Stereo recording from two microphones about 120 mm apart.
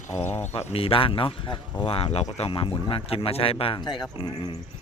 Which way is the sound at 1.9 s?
55° left (ahead or behind).